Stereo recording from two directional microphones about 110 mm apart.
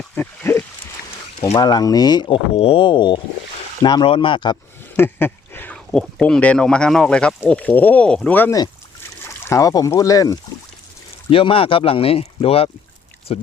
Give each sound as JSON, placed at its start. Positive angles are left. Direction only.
{"t": 0.2, "sound": "a sound", "side_deg": 20}
{"t": 1.5, "sound": "speech", "side_deg": 35}
{"t": 4.9, "sound": "speech", "side_deg": 20}
{"t": 8.4, "sound": "speech", "side_deg": 35}
{"t": 11.3, "sound": "speech", "side_deg": 55}